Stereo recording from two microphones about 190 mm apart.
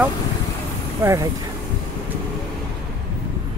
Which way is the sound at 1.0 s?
15° right (ahead or behind).